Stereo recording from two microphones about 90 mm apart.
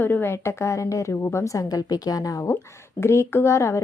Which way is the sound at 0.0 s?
25° left (ahead or behind).